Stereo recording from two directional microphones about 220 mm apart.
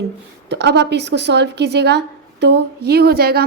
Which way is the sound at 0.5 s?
50° right (ahead or behind).